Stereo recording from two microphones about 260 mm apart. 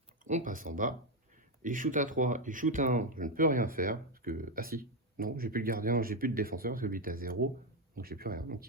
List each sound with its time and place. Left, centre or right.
0.3 s speech: right